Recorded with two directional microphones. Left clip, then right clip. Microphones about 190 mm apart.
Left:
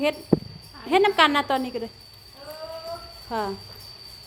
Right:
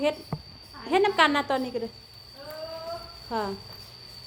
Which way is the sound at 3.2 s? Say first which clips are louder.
Left 2 dB; 35° left (ahead or behind).